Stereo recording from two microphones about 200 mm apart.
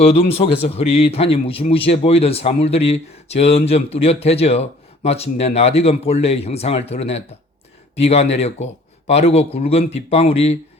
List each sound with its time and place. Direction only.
0.0 s a man's voice: 30° left (ahead or behind)